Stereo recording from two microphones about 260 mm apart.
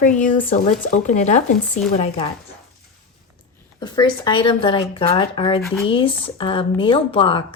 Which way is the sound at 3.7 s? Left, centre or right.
Centre.